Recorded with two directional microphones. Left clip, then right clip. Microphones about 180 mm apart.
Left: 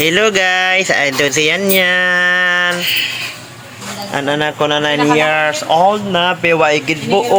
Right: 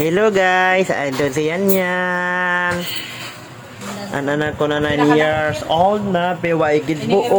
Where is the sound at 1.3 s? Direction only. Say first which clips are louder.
Left 6 dB; 20° right (ahead or behind).